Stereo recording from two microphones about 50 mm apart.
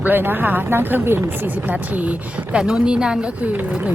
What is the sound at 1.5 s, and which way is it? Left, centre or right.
A woman's voice, right.